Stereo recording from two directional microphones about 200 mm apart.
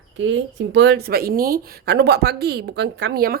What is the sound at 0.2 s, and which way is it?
Speech, 65° right (ahead or behind).